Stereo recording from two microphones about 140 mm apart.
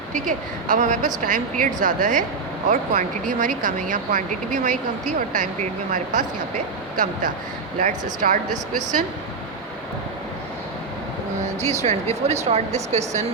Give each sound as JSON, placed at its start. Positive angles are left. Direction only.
{"t": 0.1, "sound": "speech", "side_deg": -65}
{"t": 11.6, "sound": "speech", "side_deg": -50}